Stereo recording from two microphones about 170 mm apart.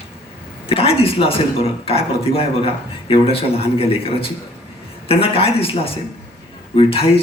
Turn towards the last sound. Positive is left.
turn(degrees=35)  # may be behind; listen again after turning